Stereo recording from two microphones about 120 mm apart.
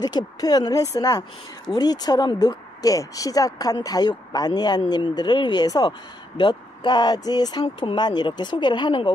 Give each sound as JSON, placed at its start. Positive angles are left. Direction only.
{"t": 0.0, "sound": "speech", "side_deg": 35}